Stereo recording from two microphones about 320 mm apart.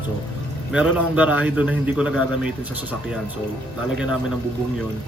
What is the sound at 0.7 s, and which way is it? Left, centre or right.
A man's voice, centre.